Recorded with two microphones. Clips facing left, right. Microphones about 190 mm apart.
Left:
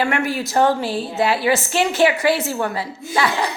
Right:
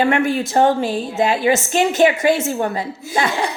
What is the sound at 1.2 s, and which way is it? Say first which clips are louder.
A woman's voice: right 2 dB; 20° right (ahead or behind).